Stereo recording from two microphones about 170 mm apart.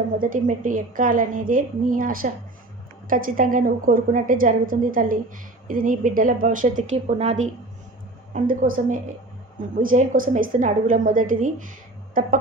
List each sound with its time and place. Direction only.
0.2 s a woman's voice: 50° right (ahead or behind)
8.3 s a woman's voice: 50° right (ahead or behind)
12.1 s a sound: 50° right (ahead or behind)